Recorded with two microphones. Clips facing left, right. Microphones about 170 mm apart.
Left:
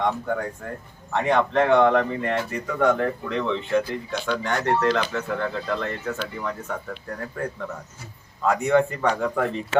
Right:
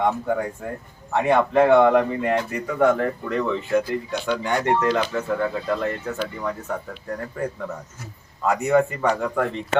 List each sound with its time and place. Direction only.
0.0 s a man's voice: 5° right (ahead or behind)